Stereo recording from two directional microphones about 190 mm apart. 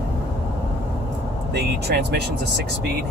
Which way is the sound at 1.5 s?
60° right (ahead or behind).